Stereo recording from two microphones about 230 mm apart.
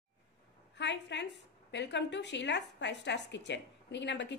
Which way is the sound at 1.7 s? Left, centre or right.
Left.